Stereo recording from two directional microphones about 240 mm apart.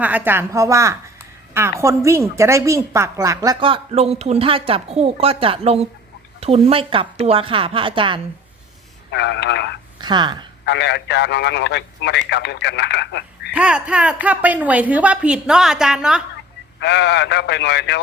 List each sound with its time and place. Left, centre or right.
0.0 s a woman's voice: centre
9.1 s speech: left
10.0 s speech: centre
10.7 s speech: left
13.5 s a woman's voice: centre
16.8 s speech: left